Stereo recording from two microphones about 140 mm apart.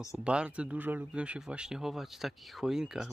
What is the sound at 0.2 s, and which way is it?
Speech, 5° right (ahead or behind).